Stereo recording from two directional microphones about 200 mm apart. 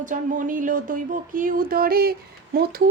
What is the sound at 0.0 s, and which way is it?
Speech, 40° right (ahead or behind).